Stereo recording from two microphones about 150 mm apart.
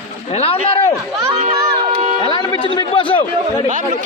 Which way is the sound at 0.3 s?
40° left (ahead or behind).